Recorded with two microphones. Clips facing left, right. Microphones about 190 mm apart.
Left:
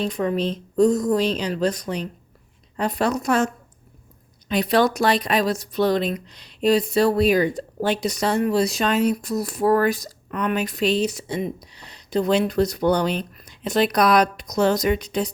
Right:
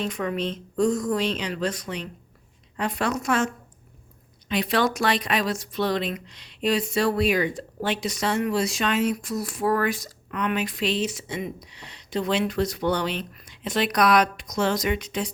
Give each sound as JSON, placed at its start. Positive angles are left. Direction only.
{"t": 0.0, "sound": "speech", "side_deg": 35}